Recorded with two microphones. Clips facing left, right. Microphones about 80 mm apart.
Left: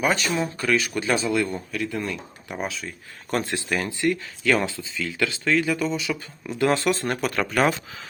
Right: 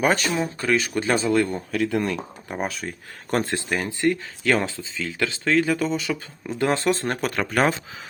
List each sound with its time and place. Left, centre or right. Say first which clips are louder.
0.0 s speech: right 2 dB; right
0.3 s speech: right 1 dB; right
1.7 s speech: right 5 dB; right
3.3 s speech: right 2 dB; right
3.7 s speech: even; right